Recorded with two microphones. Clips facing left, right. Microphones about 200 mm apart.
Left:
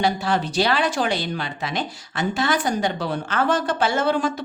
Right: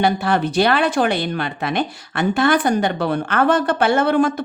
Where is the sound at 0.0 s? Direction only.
60° right (ahead or behind).